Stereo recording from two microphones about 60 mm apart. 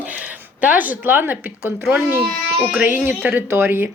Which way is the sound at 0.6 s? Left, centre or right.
Right.